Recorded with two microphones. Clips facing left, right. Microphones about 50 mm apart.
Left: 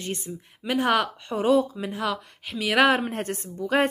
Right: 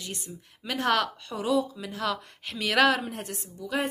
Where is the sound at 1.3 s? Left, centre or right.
Left.